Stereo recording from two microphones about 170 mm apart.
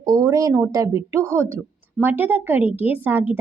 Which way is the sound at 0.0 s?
20° right (ahead or behind).